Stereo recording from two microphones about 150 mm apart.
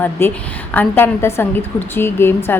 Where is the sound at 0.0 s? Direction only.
15° left (ahead or behind).